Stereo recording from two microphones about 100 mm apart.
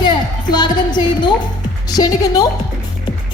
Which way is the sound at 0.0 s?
45° left (ahead or behind).